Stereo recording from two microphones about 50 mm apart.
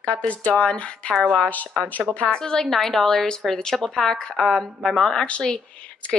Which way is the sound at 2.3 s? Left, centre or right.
Centre.